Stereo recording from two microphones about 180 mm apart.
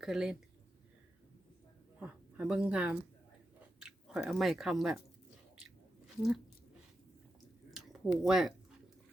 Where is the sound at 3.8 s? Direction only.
5° right (ahead or behind).